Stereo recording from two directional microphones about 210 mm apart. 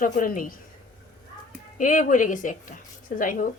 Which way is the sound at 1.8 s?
40° left (ahead or behind).